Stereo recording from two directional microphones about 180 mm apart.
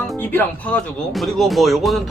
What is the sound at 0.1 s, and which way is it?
Speech, 10° left (ahead or behind).